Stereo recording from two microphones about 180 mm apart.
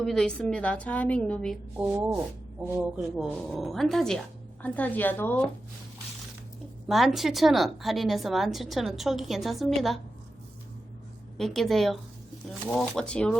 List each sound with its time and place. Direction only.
0.0 s a woman's voice: 5° left (ahead or behind)
1.8 s a woman's voice: 20° right (ahead or behind)
3.2 s a woman's voice: centre (ahead or behind)
6.8 s a woman's voice: centre (ahead or behind)
11.3 s a woman's voice: centre (ahead or behind)